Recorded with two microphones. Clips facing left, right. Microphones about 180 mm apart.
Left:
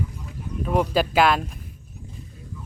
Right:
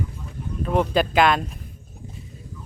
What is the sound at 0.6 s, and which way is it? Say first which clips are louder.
Speech: right 1 dB; 5° left (ahead or behind).